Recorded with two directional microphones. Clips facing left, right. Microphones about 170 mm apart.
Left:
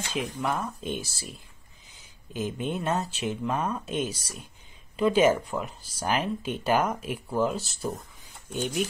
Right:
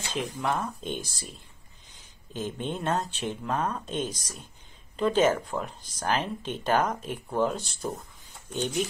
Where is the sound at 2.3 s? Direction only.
10° left (ahead or behind).